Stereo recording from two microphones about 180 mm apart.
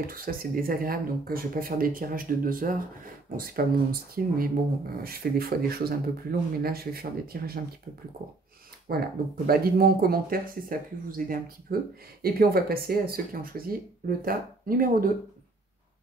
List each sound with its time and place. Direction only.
0.0 s speech: 50° right (ahead or behind)
8.9 s speech: 55° right (ahead or behind)